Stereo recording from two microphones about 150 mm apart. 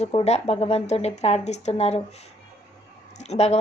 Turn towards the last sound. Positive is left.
turn(degrees=45)  # may be behind; listen again after turning